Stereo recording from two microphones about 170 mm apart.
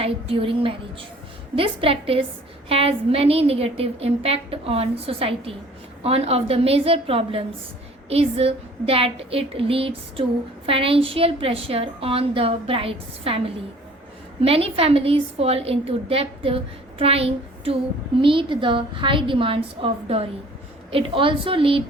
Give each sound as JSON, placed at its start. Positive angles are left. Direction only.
{"t": 0.0, "sound": "a woman's voice", "side_deg": -35}